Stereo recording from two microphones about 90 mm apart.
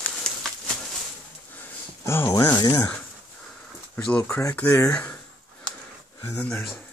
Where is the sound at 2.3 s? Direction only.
45° left (ahead or behind).